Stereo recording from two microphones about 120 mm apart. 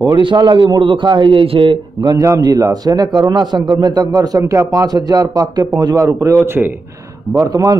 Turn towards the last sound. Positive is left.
turn(degrees=-30)  # may be behind; listen again after turning